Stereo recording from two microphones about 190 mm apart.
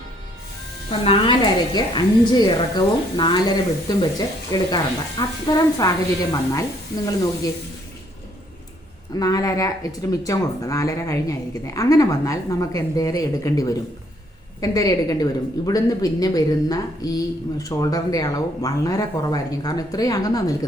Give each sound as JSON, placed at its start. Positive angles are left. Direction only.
{"t": 0.9, "sound": "a woman's voice", "side_deg": 30}
{"t": 9.1, "sound": "a woman's voice", "side_deg": 20}